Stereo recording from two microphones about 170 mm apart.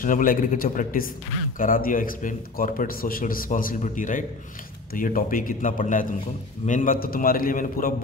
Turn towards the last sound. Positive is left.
turn(degrees=55)  # may be behind; listen again after turning